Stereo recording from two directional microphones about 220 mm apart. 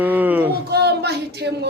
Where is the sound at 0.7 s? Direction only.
50° right (ahead or behind).